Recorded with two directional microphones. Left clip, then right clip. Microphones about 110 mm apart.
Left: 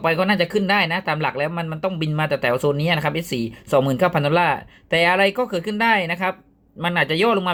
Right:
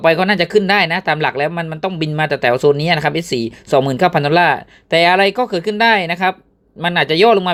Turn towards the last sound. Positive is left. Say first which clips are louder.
# right 7 dB
turn(degrees=-20)  # may be behind; listen again after turning